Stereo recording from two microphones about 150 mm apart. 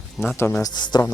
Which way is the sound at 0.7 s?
30° left (ahead or behind).